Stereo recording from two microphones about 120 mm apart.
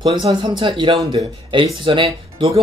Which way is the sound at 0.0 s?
40° right (ahead or behind).